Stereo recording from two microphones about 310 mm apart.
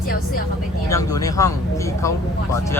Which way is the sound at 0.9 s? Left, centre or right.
Centre.